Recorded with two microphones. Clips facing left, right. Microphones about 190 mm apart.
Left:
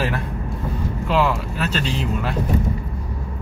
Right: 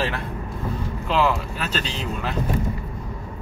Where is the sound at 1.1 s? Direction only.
5° left (ahead or behind).